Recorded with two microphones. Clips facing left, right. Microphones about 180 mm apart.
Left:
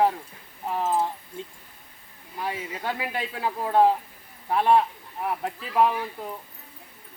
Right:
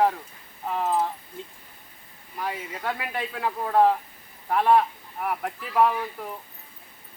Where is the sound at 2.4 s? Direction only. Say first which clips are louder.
Even; 25° left (ahead or behind).